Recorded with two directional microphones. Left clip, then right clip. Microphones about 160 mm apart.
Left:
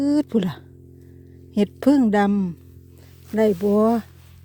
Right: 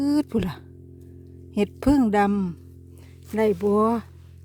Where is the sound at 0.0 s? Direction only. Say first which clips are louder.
Left 3 dB; 15° left (ahead or behind).